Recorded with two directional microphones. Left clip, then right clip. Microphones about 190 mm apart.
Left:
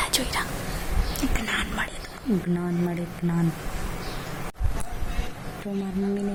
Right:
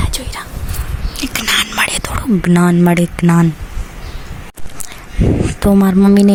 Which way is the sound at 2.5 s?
35° right (ahead or behind).